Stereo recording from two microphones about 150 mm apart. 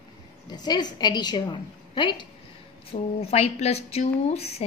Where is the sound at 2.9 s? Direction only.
45° left (ahead or behind).